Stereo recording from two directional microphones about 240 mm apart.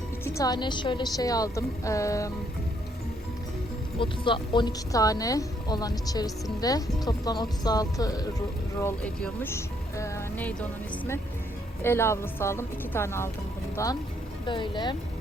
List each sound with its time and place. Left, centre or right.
0.3 s a woman's voice: centre
3.9 s a woman's voice: left